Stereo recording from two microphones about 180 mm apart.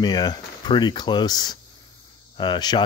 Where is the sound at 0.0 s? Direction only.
25° left (ahead or behind).